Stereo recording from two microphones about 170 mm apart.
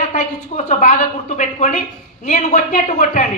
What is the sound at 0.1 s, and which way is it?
A woman's voice, 45° left (ahead or behind).